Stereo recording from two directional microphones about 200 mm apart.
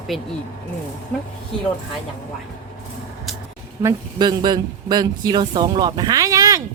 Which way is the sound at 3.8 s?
20° right (ahead or behind).